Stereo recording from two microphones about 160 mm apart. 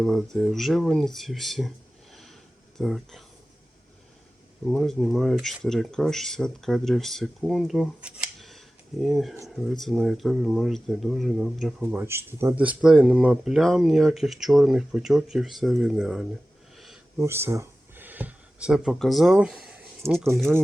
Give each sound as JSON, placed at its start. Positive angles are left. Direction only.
{"t": 0.0, "sound": "speech", "side_deg": 0}
{"t": 2.7, "sound": "speech", "side_deg": 0}
{"t": 4.6, "sound": "speech", "side_deg": 5}
{"t": 11.8, "sound": "speech", "side_deg": -10}
{"t": 16.7, "sound": "a sound", "side_deg": 0}
{"t": 17.2, "sound": "speech", "side_deg": -15}
{"t": 20.0, "sound": "speech", "side_deg": -15}